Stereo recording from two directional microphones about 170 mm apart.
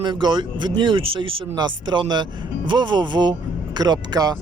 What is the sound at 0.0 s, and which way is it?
Speech, 25° right (ahead or behind).